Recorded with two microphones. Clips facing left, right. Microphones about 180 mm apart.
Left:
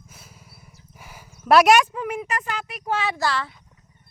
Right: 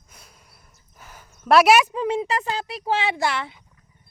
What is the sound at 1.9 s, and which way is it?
Speech, 25° right (ahead or behind).